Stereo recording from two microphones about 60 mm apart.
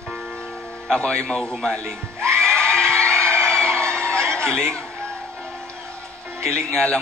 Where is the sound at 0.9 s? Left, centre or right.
Centre.